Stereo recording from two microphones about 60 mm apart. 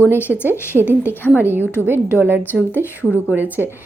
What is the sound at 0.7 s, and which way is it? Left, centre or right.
Speech, right.